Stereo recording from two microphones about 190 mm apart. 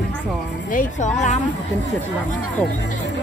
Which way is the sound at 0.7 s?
40° left (ahead or behind).